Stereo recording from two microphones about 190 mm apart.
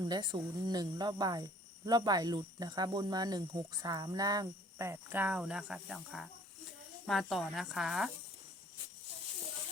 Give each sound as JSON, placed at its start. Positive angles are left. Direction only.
{"t": 0.0, "sound": "speech", "side_deg": -20}